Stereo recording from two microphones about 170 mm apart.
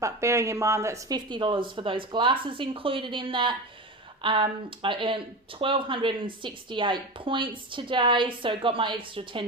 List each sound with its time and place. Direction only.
0.0 s speech: 15° right (ahead or behind)